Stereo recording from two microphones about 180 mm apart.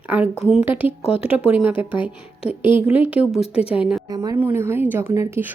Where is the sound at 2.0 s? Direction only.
30° left (ahead or behind).